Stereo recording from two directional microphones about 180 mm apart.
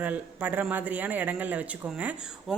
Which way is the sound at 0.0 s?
10° right (ahead or behind).